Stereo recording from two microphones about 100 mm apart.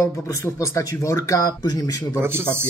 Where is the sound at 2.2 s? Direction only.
25° right (ahead or behind).